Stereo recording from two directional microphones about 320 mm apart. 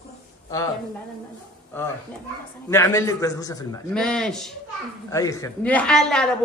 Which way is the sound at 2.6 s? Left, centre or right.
Centre.